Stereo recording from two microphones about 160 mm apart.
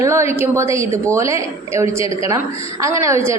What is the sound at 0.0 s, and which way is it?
A woman's voice, 20° right (ahead or behind).